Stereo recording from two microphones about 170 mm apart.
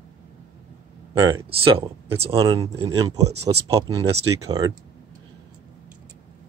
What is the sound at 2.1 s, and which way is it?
Speech, 35° right (ahead or behind).